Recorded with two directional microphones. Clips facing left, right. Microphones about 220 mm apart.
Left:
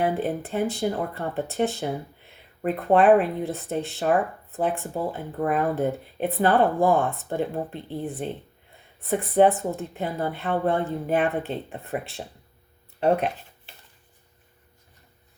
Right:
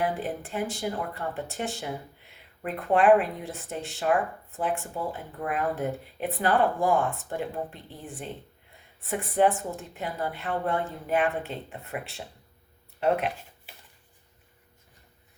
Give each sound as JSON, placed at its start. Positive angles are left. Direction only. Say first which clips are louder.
{"t": 0.0, "sound": "speech", "louder": "left 5 dB", "side_deg": 35}
{"t": 9.0, "sound": "speech", "louder": "left 5 dB", "side_deg": 35}